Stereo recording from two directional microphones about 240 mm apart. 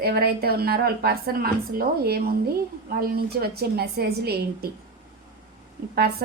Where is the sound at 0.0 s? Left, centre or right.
Right.